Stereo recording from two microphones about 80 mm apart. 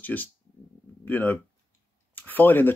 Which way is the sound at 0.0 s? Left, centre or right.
Left.